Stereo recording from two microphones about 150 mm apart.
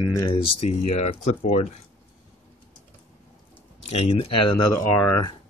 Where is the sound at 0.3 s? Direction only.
40° left (ahead or behind).